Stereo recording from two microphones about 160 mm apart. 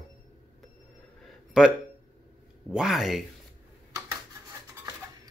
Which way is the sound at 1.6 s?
5° right (ahead or behind).